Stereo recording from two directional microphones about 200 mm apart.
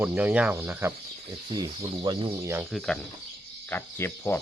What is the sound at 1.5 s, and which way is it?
Speech, 25° right (ahead or behind).